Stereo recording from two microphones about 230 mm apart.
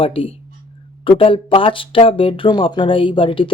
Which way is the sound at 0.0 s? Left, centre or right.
Left.